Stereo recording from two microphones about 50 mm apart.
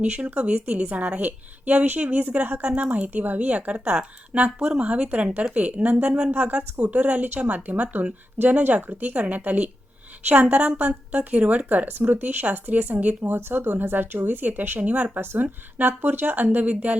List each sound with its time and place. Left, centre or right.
0.0 s speech: right
10.8 s speech: right
13.3 s speech: right